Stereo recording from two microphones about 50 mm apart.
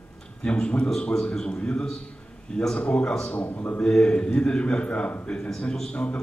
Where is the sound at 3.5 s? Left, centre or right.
Left.